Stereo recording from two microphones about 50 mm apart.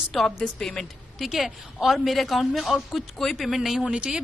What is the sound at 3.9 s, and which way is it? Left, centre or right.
Speech, centre.